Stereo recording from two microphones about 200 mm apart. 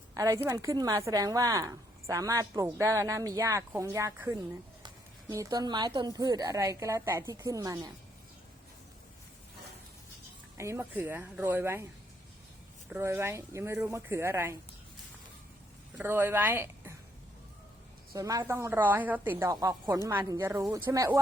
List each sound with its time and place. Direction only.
0.1 s a woman's voice: 15° right (ahead or behind)
10.6 s a woman's voice: 10° right (ahead or behind)
12.9 s a woman's voice: 10° right (ahead or behind)
16.0 s a woman's voice: 10° right (ahead or behind)
18.1 s a woman's voice: 15° right (ahead or behind)